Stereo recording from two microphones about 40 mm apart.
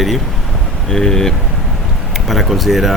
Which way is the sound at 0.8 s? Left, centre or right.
Centre.